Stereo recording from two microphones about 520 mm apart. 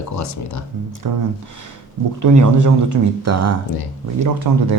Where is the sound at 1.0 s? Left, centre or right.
Right.